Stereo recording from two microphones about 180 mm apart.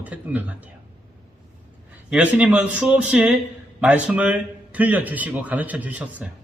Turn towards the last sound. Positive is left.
turn(degrees=-10)  # may be behind; listen again after turning